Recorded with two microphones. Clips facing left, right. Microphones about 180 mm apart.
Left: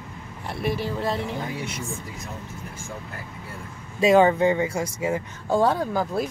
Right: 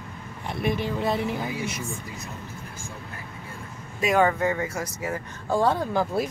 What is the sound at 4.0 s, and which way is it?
Speech, 25° left (ahead or behind).